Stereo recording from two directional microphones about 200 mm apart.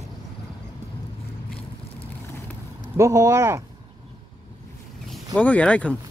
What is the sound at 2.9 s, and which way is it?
Speech, 15° right (ahead or behind).